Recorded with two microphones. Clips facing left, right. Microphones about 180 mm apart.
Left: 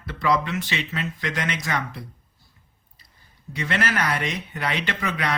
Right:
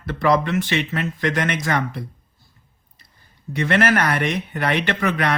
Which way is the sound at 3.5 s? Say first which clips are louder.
Right 7 dB; 55° right (ahead or behind).